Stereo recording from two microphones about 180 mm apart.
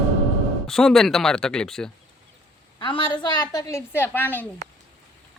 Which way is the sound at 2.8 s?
25° left (ahead or behind).